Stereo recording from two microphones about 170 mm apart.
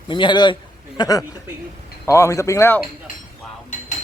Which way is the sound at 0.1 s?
25° left (ahead or behind).